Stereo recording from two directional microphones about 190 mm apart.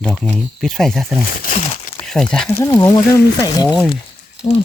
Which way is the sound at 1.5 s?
35° left (ahead or behind).